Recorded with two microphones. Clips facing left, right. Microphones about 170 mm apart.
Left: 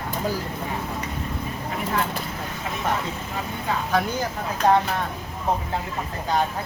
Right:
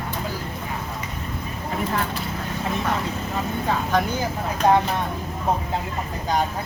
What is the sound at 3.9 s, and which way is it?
Speech, centre (ahead or behind).